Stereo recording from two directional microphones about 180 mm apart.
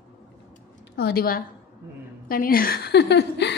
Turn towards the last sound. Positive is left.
turn(degrees=70)  # may be behind; listen again after turning